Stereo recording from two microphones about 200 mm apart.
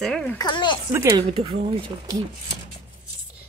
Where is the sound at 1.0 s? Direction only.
20° right (ahead or behind).